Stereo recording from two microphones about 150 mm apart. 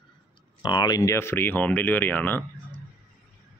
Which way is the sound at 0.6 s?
30° left (ahead or behind).